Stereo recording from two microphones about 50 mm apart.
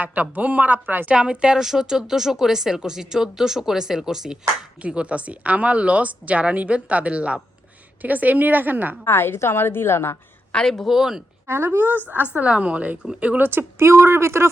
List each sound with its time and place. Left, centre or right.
0.0 s speech: right
1.0 s speech: right
4.8 s speech: right
9.0 s a woman's voice: left
10.5 s speech: centre
10.8 s speech: centre
11.4 s speech: right
13.4 s speech: right
13.7 s speech: right